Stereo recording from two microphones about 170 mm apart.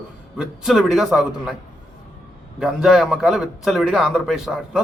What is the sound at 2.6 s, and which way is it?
A man's voice, 5° right (ahead or behind).